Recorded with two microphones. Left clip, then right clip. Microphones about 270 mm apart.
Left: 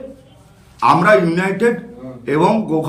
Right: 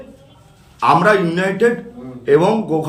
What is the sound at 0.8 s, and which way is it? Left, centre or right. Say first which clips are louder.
A man's voice: left 1 dB; centre.